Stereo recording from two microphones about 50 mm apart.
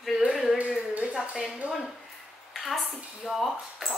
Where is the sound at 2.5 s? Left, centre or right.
Centre.